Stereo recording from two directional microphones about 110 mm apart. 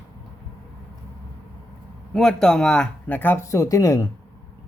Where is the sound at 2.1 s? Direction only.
5° left (ahead or behind); by 4.1 s 30° left (ahead or behind).